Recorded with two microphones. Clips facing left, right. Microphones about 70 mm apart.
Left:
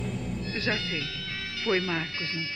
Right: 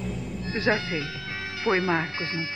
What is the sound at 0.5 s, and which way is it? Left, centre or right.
Speech, right.